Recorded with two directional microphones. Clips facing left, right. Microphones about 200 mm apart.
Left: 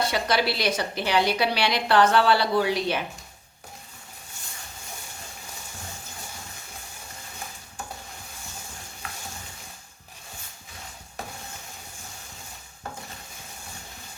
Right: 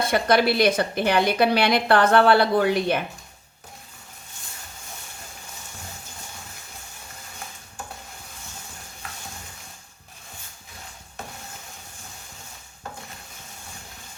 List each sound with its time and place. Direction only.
0.0 s a woman's voice: 50° right (ahead or behind)